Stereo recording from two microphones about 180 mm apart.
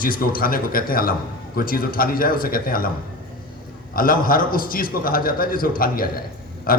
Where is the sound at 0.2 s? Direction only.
55° left (ahead or behind).